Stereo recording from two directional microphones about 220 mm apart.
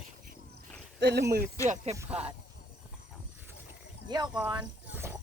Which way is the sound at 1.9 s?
10° right (ahead or behind).